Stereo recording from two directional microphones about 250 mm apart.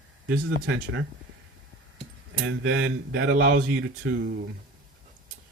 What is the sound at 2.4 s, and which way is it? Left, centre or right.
Speech, right.